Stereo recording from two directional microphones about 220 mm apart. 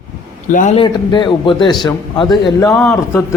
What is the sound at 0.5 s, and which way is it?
Speech, 35° left (ahead or behind).